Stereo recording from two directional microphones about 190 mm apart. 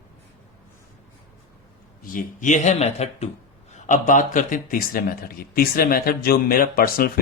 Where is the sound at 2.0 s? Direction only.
45° left (ahead or behind).